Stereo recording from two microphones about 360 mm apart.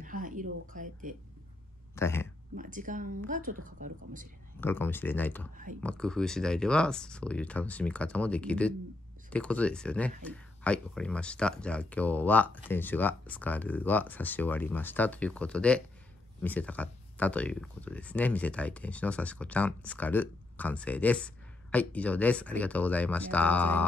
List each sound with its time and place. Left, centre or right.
0.0 s a sound: right
1.0 s speech: right
2.0 s speech: centre
2.5 s speech: right
4.6 s speech: centre